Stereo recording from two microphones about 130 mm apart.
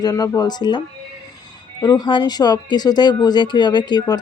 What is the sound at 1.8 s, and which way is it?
Speech, 30° left (ahead or behind).